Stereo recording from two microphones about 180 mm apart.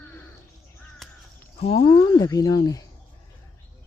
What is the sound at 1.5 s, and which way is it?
Speech, 30° left (ahead or behind).